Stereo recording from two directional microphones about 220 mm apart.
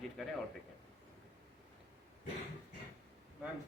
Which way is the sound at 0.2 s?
5° left (ahead or behind).